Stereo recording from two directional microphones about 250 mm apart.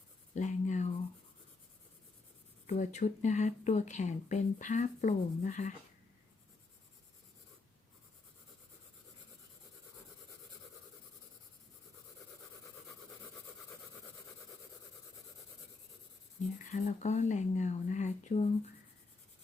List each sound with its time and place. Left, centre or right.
0.3 s speech: left
2.6 s speech: left
16.6 s speech: left